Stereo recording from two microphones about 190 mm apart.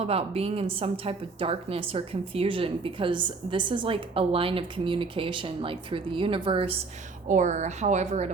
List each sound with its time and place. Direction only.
0.0 s a woman's voice: 30° right (ahead or behind)
7.3 s speech: 40° right (ahead or behind)